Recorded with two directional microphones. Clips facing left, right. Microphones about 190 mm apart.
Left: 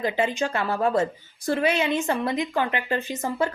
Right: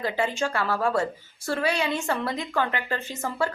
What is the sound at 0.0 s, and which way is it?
A woman's voice, 20° left (ahead or behind).